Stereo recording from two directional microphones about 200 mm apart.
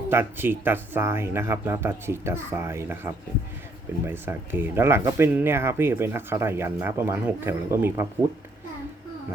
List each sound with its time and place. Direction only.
0.1 s speech: 10° right (ahead or behind)